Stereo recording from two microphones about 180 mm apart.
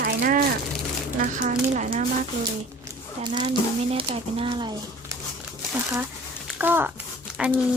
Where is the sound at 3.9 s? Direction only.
30° right (ahead or behind).